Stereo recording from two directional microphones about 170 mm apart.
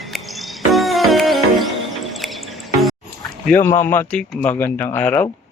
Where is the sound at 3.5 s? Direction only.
15° left (ahead or behind).